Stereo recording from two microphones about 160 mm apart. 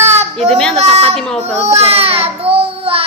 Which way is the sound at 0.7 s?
40° right (ahead or behind).